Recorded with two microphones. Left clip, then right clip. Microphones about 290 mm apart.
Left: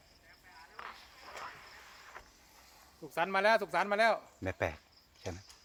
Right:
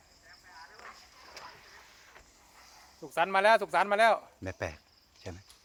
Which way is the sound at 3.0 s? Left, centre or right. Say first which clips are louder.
Right 5 dB; centre.